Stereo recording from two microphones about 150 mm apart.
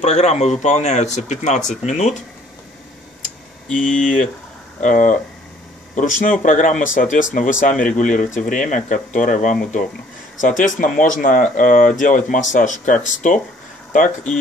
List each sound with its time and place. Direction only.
0.0 s speech: 45° left (ahead or behind)
3.7 s speech: 65° left (ahead or behind)